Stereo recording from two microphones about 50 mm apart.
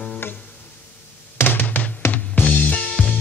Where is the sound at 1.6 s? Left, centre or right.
Left.